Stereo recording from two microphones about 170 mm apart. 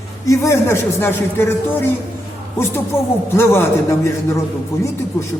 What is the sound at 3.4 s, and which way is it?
Speech, 15° left (ahead or behind).